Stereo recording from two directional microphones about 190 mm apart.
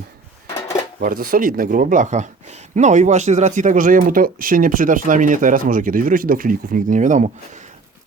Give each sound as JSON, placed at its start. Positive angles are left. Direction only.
{"t": 0.9, "sound": "speech", "side_deg": -50}